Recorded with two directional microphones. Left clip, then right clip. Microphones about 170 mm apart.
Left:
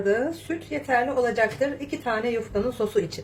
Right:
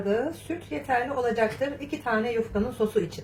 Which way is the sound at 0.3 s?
45° left (ahead or behind).